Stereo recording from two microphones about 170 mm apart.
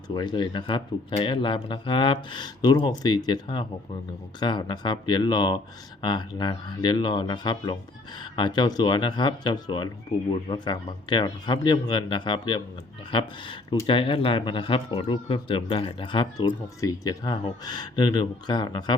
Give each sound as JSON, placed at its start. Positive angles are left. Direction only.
{"t": 0.1, "sound": "speech", "side_deg": 25}